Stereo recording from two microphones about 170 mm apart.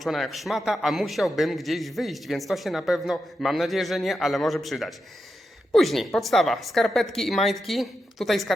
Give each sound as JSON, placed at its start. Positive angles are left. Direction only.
{"t": 0.0, "sound": "a man's voice", "side_deg": 0}